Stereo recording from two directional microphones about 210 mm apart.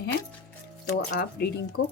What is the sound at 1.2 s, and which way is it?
Speech, 50° left (ahead or behind).